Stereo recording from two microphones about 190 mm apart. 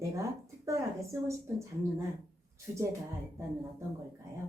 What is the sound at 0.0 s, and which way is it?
Speech, 15° right (ahead or behind).